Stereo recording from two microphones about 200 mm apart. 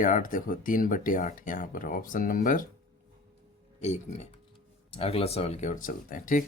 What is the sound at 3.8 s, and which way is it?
Speech, 35° left (ahead or behind).